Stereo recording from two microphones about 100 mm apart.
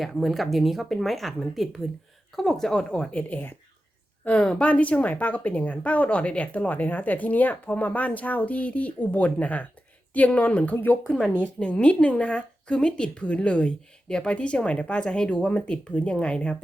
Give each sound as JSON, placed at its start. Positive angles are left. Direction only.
{"t": 0.0, "sound": "speech", "side_deg": 0}
{"t": 11.0, "sound": "speech", "side_deg": 0}
{"t": 11.3, "sound": "speech", "side_deg": 15}